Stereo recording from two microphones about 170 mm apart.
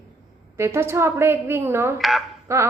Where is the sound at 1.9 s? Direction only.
Centre (ahead or behind).